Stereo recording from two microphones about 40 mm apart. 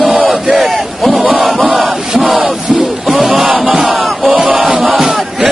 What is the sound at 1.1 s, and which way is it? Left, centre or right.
Crowd, right.